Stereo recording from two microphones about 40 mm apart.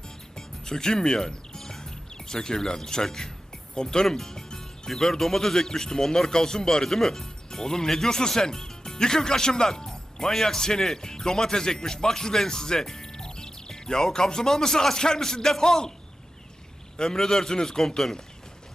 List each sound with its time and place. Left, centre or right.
0.3 s music: centre
1.7 s speech: centre
17.0 s speech: centre